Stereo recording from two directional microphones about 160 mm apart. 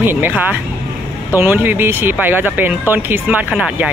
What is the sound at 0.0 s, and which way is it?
Speech, 15° right (ahead or behind).